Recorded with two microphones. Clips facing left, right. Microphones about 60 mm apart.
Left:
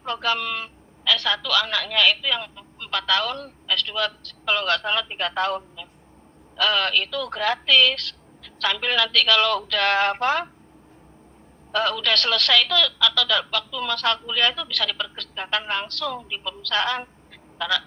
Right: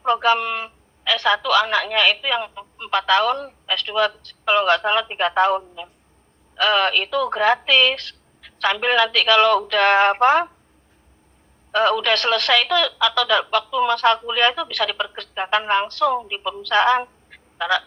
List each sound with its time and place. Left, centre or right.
0.0 s a woman's voice: right
11.7 s a woman's voice: right